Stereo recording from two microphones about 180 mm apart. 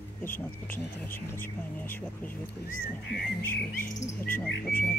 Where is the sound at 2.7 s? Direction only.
50° left (ahead or behind).